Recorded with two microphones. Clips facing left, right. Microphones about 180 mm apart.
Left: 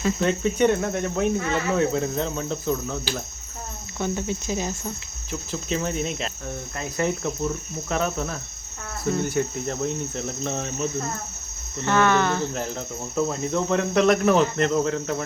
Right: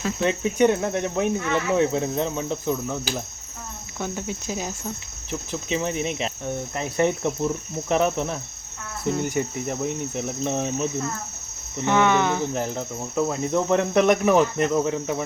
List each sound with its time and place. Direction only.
0.0 s cricket: 5° right (ahead or behind)
6.7 s speech: 25° right (ahead or behind)
9.1 s cricket: 10° right (ahead or behind)